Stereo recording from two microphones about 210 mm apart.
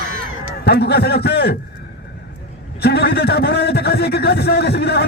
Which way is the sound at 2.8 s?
50° left (ahead or behind).